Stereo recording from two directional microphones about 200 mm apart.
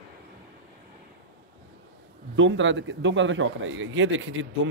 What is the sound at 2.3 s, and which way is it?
A man's voice, 70° right (ahead or behind).